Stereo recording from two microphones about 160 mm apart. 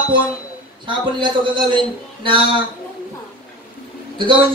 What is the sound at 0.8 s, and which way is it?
Speech, 30° right (ahead or behind).